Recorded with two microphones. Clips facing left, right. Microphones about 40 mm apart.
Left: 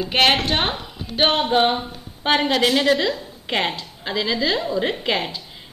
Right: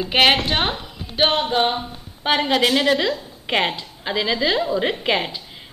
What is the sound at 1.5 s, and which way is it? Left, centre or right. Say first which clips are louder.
A woman's voice: left 2 dB; centre.